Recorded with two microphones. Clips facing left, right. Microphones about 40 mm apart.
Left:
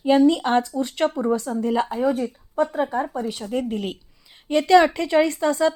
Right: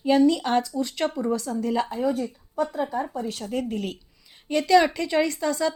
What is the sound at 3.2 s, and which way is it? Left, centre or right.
A woman's voice, left.